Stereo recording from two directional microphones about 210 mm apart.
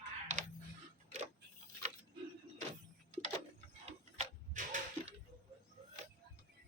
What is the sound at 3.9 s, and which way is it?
Tick-tock, 30° right (ahead or behind).